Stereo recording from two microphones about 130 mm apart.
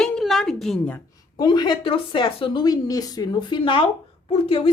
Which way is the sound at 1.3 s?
35° left (ahead or behind).